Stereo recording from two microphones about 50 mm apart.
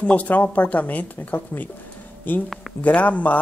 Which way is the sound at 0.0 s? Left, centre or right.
Left.